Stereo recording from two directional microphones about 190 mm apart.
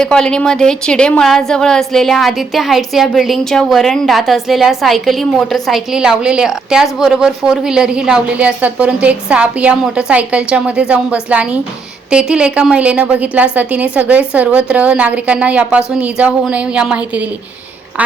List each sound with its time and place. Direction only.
0.0 s a woman's voice: 5° left (ahead or behind)